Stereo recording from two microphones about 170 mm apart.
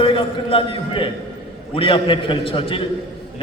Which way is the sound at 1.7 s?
30° left (ahead or behind).